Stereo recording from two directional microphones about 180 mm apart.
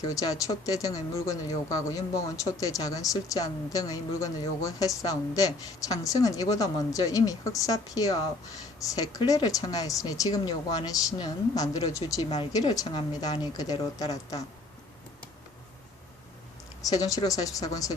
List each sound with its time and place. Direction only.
0.0 s speech: 20° left (ahead or behind)
16.8 s speech: 20° left (ahead or behind)